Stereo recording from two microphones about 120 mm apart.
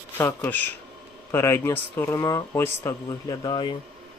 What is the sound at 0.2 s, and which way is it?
Speech, 20° left (ahead or behind).